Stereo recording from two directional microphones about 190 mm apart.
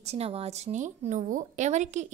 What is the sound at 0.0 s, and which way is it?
A woman's voice, 35° right (ahead or behind).